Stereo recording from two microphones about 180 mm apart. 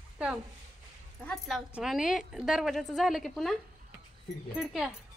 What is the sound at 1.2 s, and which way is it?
Speech, centre (ahead or behind).